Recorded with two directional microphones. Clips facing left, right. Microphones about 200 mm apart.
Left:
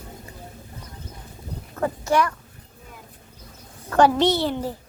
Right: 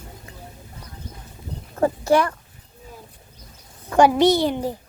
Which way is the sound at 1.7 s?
30° right (ahead or behind).